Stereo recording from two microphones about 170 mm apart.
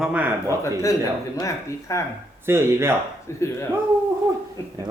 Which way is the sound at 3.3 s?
15° left (ahead or behind).